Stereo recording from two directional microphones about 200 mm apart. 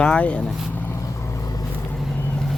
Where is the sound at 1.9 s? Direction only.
5° left (ahead or behind).